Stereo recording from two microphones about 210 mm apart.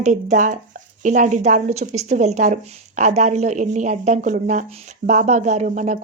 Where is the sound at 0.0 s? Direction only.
35° right (ahead or behind).